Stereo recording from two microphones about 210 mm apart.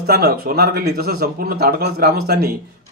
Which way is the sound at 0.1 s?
50° right (ahead or behind).